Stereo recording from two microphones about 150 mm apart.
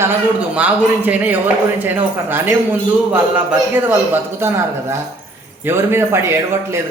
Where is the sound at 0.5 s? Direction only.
10° right (ahead or behind).